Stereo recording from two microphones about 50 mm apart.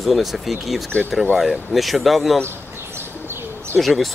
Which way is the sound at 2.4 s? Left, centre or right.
Right.